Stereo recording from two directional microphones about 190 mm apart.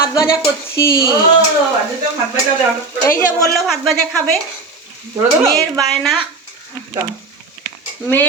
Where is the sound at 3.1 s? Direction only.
15° left (ahead or behind).